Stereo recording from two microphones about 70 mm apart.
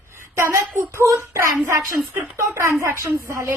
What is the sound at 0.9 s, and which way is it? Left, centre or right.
A woman's voice, right.